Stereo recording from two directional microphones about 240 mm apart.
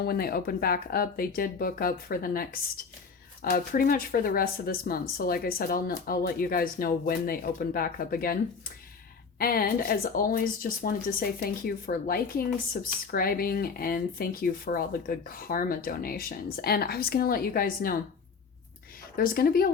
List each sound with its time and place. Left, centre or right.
0.0 s speech: left
9.4 s speech: left
19.1 s speech: left